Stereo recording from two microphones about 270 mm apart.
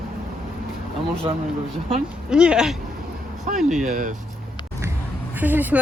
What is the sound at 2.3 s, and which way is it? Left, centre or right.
Speech, centre.